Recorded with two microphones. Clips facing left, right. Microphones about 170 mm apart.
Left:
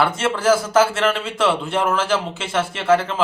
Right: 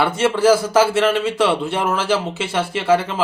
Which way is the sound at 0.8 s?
10° right (ahead or behind).